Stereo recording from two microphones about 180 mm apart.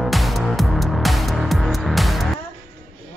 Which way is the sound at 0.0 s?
Centre (ahead or behind).